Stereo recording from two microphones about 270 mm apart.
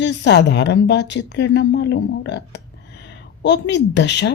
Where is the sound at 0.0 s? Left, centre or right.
Left.